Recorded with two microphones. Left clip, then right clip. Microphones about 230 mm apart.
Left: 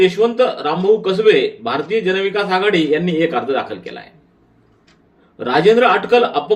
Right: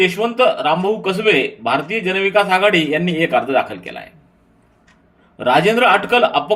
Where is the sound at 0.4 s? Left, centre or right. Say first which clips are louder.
Right 3 dB; right.